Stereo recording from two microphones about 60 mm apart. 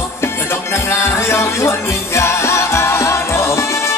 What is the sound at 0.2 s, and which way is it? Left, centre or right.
Music, left.